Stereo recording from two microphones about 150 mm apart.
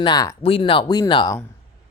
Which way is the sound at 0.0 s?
25° left (ahead or behind).